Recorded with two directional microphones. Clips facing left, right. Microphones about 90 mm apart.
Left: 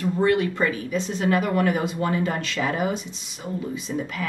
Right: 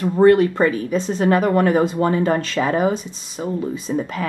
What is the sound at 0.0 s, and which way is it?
Speech, 40° right (ahead or behind).